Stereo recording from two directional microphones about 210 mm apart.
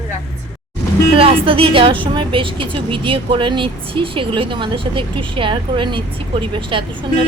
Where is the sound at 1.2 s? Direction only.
25° right (ahead or behind).